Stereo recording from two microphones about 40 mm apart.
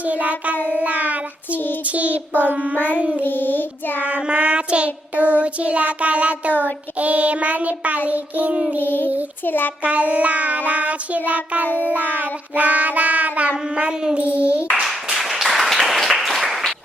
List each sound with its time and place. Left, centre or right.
0.0 s child singing: right
3.2 s child singing: left
4.0 s child singing: right
6.5 s child singing: left
7.0 s child singing: right
8.8 s child singing: left
9.8 s child singing: right
14.8 s applause: centre